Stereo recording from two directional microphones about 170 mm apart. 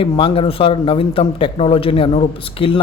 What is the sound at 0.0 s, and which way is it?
Speech, 30° left (ahead or behind).